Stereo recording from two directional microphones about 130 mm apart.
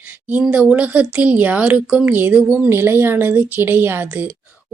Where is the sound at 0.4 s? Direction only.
10° right (ahead or behind).